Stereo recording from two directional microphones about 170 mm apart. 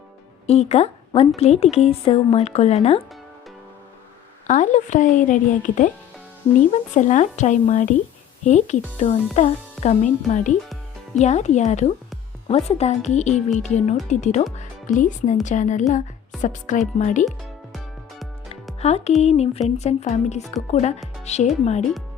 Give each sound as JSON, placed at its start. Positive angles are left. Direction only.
{"t": 0.4, "sound": "a woman's voice", "side_deg": 40}
{"t": 4.4, "sound": "a woman's voice", "side_deg": 45}
{"t": 17.2, "sound": "music", "side_deg": 0}
{"t": 18.8, "sound": "speech", "side_deg": 40}